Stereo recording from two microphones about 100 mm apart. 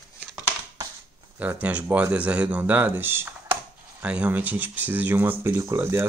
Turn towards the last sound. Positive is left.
turn(degrees=-20)  # may be behind; listen again after turning